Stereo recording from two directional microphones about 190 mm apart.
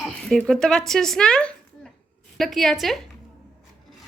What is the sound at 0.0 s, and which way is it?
A woman's voice, centre (ahead or behind).